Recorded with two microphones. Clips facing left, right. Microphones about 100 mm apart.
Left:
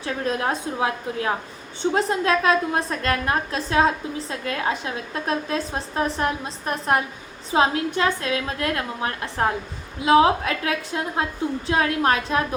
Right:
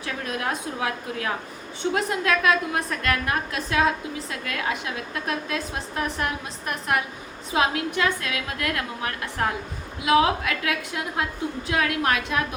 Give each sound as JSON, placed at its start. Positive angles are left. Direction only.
{"t": 0.0, "sound": "a woman's voice", "side_deg": 30}